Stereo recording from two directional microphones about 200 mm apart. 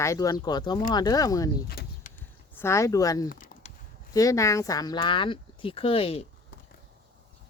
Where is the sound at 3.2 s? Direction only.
40° left (ahead or behind).